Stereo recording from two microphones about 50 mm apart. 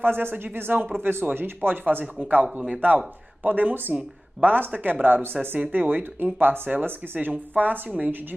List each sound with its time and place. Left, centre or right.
0.0 s speech: right
2.1 s speech: right